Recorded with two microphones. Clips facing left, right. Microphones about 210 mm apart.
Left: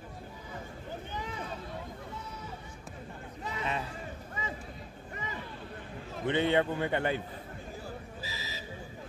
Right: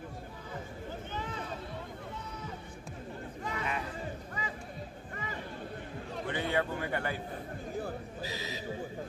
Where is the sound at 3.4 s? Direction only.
25° left (ahead or behind).